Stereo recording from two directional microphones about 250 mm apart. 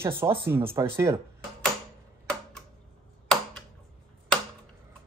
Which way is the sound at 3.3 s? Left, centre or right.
Centre.